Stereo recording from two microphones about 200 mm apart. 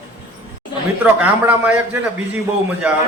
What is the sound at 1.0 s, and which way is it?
A man's voice, 5° right (ahead or behind).